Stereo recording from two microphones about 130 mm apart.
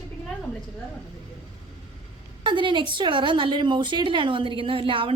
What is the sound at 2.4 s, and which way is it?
A woman's voice, 40° right (ahead or behind).